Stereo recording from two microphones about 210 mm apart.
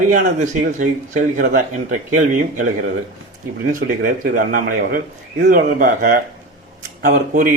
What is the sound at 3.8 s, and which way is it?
Speech, 45° right (ahead or behind).